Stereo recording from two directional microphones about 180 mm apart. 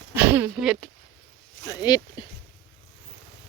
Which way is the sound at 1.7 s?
20° left (ahead or behind).